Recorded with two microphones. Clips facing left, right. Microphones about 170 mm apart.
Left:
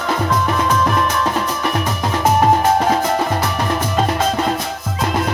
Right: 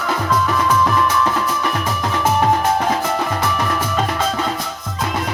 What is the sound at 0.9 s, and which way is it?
Music, 40° left (ahead or behind).